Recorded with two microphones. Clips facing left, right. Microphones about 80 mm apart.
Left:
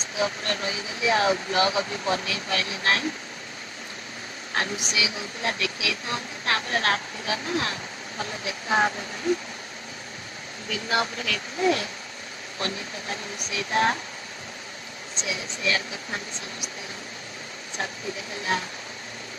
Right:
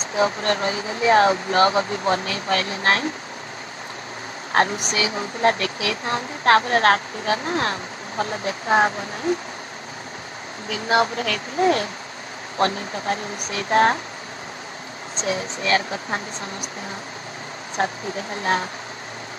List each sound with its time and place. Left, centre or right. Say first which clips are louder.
0.1 s speech: right 7 dB; right
4.5 s speech: right 9 dB; right
10.9 s speech: right 7 dB; right
15.1 s speech: right 7 dB; right
17.7 s speech: right 8 dB; right